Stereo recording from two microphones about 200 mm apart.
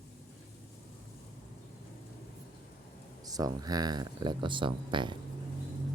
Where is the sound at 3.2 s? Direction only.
20° right (ahead or behind).